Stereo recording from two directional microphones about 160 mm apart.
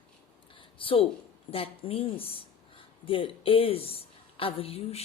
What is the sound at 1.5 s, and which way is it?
A woman's voice, 35° left (ahead or behind).